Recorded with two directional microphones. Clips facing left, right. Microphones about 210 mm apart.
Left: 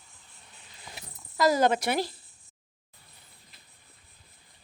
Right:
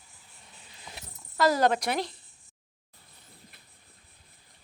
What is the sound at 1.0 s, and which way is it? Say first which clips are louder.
Speech: even; centre (ahead or behind).